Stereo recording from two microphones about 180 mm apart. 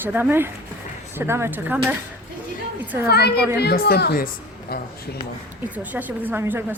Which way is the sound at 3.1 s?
60° left (ahead or behind).